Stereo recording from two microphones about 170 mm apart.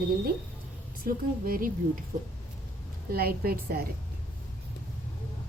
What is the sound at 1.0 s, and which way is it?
Speech, 55° right (ahead or behind).